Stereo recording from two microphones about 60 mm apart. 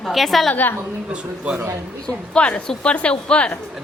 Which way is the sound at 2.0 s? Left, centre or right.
Centre.